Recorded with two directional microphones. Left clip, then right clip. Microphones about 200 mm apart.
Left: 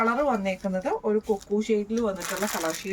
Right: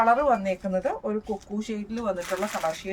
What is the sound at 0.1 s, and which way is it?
Speech, 20° right (ahead or behind).